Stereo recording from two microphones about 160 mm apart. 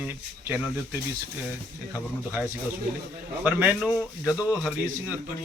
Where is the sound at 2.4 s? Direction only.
10° right (ahead or behind).